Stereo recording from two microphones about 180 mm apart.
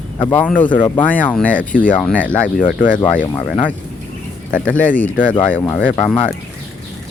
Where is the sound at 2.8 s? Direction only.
50° left (ahead or behind).